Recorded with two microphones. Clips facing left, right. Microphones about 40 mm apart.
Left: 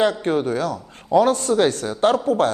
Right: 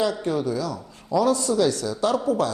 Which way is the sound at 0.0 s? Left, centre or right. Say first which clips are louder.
Left 4 dB; left.